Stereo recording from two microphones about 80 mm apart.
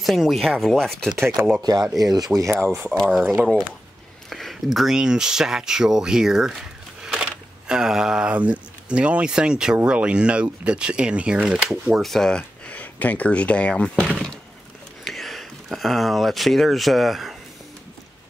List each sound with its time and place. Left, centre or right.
0.0 s speech: centre
1.6 s speech: right
2.5 s speech: right
2.8 s speech: centre
12.0 s speech: centre
14.1 s a sound: centre
15.0 s speech: centre